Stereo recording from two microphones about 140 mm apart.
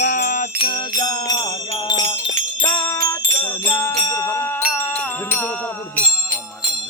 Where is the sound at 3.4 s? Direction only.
10° left (ahead or behind).